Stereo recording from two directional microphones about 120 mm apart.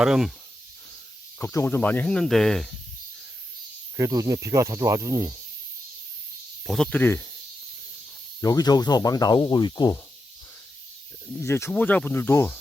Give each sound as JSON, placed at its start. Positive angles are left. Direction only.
{"t": 0.0, "sound": "speech", "side_deg": -5}
{"t": 1.4, "sound": "speech", "side_deg": 20}
{"t": 3.9, "sound": "speech", "side_deg": -30}
{"t": 6.7, "sound": "speech", "side_deg": 0}
{"t": 6.9, "sound": "speech", "side_deg": 20}
{"t": 8.4, "sound": "speech", "side_deg": 30}
{"t": 11.3, "sound": "speech", "side_deg": 20}